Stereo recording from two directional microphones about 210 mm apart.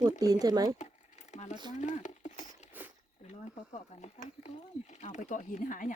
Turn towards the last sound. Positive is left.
turn(degrees=40)  # may be behind; listen again after turning